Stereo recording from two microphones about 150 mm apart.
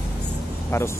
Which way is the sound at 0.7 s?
20° left (ahead or behind).